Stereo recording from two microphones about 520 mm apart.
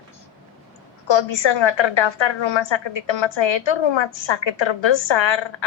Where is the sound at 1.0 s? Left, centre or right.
Left.